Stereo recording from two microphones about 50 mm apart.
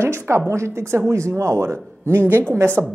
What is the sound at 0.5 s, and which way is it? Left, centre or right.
Speech, right.